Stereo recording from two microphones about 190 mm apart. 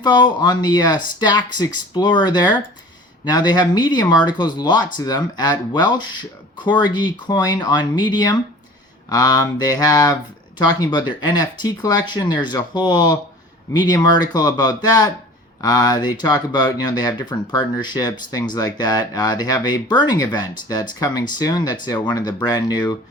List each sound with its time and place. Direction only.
0.0 s speech: 25° left (ahead or behind)